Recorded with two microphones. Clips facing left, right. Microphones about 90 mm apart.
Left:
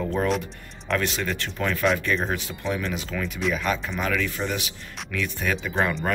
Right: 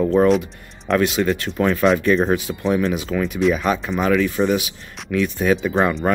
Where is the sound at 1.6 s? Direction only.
30° right (ahead or behind).